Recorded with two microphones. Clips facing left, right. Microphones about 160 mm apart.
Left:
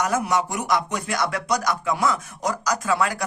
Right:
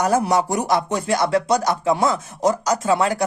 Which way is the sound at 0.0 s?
35° right (ahead or behind).